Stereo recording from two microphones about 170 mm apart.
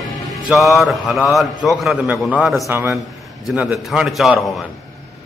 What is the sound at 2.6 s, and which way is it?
Speech, 15° right (ahead or behind).